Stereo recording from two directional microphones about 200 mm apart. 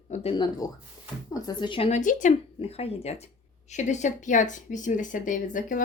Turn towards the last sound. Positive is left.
turn(degrees=40)  # may be behind; listen again after turning